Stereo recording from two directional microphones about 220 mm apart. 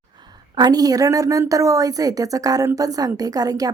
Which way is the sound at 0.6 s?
20° right (ahead or behind).